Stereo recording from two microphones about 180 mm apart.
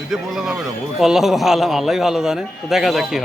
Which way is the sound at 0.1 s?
Centre (ahead or behind).